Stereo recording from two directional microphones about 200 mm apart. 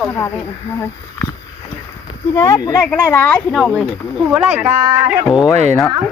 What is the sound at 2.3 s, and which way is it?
Speech, 20° left (ahead or behind).